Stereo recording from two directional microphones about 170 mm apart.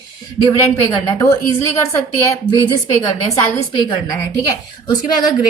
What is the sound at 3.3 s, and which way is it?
Speech, 20° left (ahead or behind).